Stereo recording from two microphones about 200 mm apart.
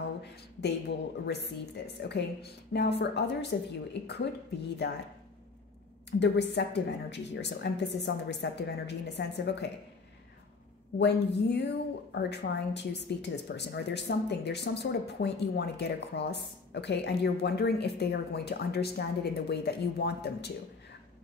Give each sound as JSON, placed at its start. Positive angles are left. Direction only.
{"t": 0.2, "sound": "speech", "side_deg": 55}
{"t": 6.0, "sound": "speech", "side_deg": 60}
{"t": 11.0, "sound": "speech", "side_deg": 55}